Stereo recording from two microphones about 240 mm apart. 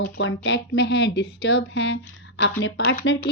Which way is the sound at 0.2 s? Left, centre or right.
Left.